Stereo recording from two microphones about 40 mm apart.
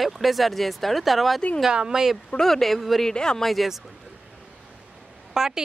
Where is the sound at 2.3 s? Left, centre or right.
Centre.